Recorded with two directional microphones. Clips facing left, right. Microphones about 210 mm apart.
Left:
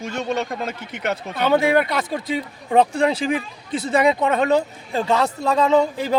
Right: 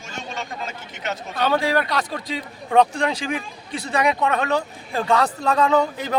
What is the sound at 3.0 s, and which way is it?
A man's voice, 35° left (ahead or behind).